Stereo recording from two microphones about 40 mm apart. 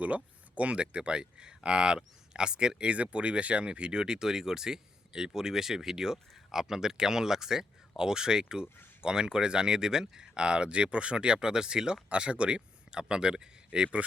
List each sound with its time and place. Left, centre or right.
0.0 s speech: right; by 2.9 s centre
2.9 s speech: right